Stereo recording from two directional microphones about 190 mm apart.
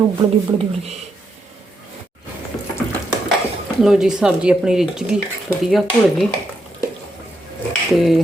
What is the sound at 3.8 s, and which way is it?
Speech, 5° right (ahead or behind).